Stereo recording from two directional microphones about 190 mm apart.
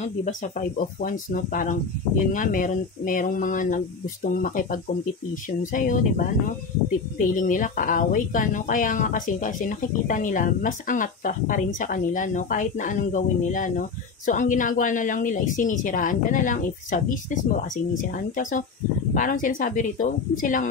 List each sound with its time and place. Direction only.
0.0 s speech: 40° left (ahead or behind)